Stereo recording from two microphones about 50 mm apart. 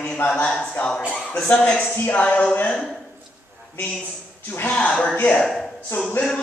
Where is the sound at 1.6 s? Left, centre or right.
Centre.